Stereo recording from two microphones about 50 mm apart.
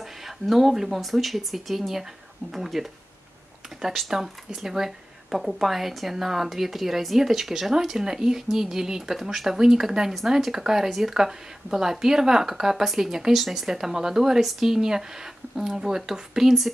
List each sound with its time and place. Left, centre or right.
0.0 s speech: centre